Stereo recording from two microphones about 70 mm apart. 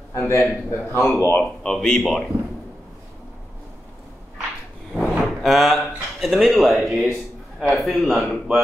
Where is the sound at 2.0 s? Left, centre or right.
Centre.